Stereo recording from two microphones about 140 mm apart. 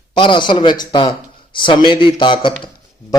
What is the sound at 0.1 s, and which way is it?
A man's voice, 35° left (ahead or behind).